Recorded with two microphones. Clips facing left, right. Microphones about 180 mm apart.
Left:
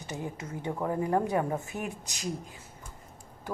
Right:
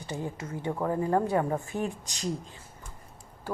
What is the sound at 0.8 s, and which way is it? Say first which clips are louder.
Speech: right 1 dB; 20° left (ahead or behind).